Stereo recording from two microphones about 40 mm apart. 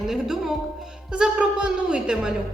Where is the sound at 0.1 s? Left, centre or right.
Centre.